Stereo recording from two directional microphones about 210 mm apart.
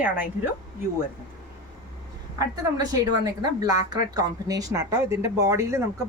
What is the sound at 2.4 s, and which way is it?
A woman's voice, 15° right (ahead or behind).